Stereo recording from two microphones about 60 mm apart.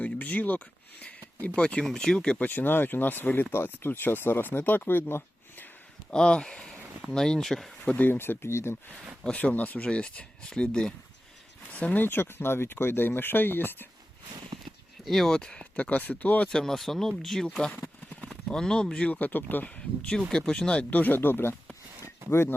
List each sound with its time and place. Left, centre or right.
0.0 s a sound: left
1.4 s speech: left
1.8 s speech: centre
2.4 s speech: left
6.1 s speech: centre
7.8 s speech: left
9.3 s speech: left
11.7 s speech: left
15.0 s speech: centre
15.7 s speech: left
16.5 s speech: centre
17.7 s clip-clop: left
18.3 s speech: centre
20.9 s speech: left